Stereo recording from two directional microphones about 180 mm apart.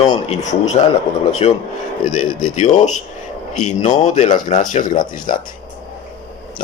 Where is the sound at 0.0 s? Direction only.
40° left (ahead or behind).